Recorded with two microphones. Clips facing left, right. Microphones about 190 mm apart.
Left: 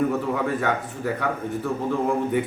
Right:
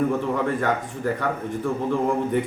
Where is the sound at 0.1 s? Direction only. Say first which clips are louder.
Right 1 dB; 5° left (ahead or behind).